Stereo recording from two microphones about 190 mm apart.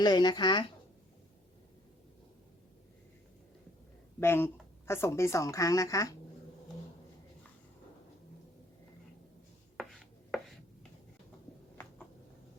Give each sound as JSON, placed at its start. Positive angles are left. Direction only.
{"t": 0.0, "sound": "a woman's voice", "side_deg": 20}
{"t": 4.2, "sound": "a woman's voice", "side_deg": 10}
{"t": 9.7, "sound": "chopping", "side_deg": 0}